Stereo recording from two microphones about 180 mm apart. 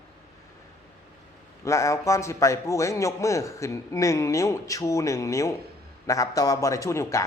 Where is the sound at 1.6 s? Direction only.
15° left (ahead or behind).